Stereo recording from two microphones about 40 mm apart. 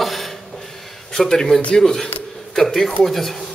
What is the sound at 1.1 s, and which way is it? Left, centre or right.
Speech, centre.